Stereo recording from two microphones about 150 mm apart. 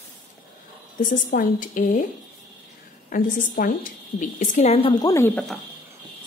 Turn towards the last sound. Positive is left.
turn(degrees=10)  # may be behind; listen again after turning